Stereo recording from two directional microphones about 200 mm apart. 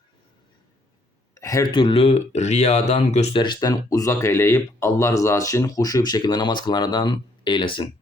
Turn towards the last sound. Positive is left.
turn(degrees=25)  # may be behind; listen again after turning